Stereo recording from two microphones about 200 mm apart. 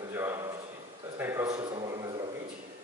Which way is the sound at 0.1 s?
10° right (ahead or behind).